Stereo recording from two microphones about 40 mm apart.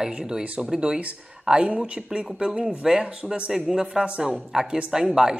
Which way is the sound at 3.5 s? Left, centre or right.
Centre.